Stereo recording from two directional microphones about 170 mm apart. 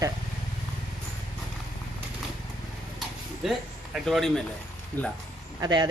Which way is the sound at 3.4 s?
Centre (ahead or behind).